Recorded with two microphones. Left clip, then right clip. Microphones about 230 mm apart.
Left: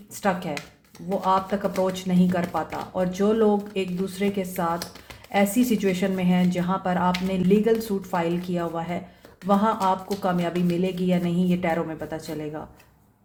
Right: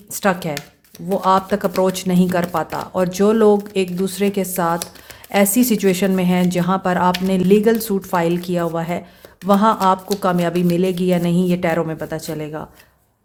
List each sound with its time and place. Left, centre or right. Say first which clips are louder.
0.1 s speech: right 6 dB; right